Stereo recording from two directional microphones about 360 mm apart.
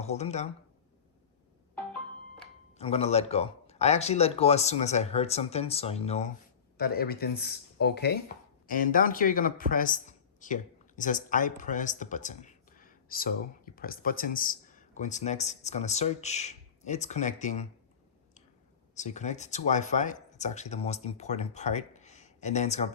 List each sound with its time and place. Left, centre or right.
0.0 s speech: centre
2.7 s speech: centre
18.9 s speech: centre